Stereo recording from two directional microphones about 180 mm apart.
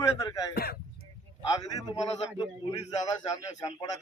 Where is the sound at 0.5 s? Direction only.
60° left (ahead or behind).